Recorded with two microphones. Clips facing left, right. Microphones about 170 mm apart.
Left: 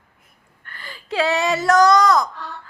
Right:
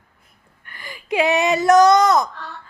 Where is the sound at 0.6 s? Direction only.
15° right (ahead or behind).